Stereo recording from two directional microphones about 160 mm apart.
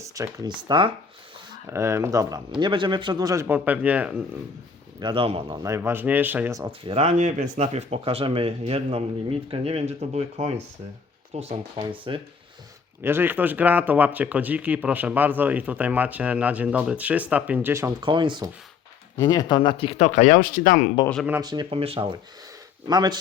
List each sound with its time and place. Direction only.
0.0 s speech: 20° right (ahead or behind)
1.7 s speech: 15° right (ahead or behind)
4.9 s speech: 30° right (ahead or behind)
5.6 s speech: 15° right (ahead or behind)
6.6 s speech: 30° right (ahead or behind)
13.0 s speech: 15° right (ahead or behind)
18.0 s speech: 30° right (ahead or behind)
19.1 s speech: 25° left (ahead or behind); by 20.9 s 55° left (ahead or behind)
21.4 s speech: 25° right (ahead or behind)